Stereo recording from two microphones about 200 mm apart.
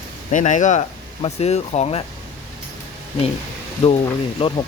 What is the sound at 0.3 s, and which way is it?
Speech, 40° left (ahead or behind).